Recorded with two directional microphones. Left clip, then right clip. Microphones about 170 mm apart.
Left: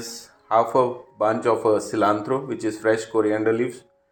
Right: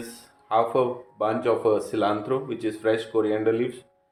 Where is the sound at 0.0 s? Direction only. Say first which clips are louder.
Left 4 dB; 25° left (ahead or behind).